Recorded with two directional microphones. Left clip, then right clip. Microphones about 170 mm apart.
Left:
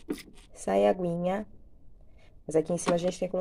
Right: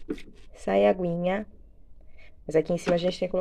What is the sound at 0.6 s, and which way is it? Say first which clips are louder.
Speech: right 3 dB; 10° left (ahead or behind).